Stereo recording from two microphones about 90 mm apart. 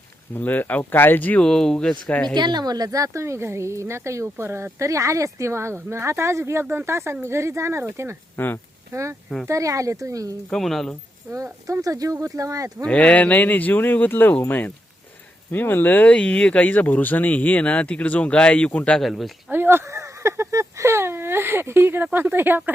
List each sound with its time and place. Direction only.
0.3 s speech: 20° left (ahead or behind)
1.5 s speech: 5° left (ahead or behind)
2.3 s speech: 55° right (ahead or behind); by 8.1 s 30° right (ahead or behind)
8.4 s speech: 20° left (ahead or behind)
8.9 s speech: 35° right (ahead or behind)
10.5 s speech: 5° left (ahead or behind)
11.6 s speech: 40° right (ahead or behind)
12.8 s speech: 15° left (ahead or behind)
18.9 s speech: centre (ahead or behind)
19.5 s speech: 25° right (ahead or behind)